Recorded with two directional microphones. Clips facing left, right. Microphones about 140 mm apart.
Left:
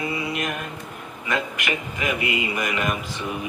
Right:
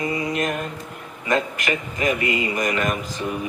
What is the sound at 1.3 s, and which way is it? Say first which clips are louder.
Speech: right 4 dB; 40° right (ahead or behind).